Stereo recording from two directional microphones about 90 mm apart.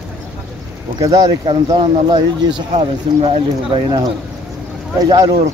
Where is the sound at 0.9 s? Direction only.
45° right (ahead or behind).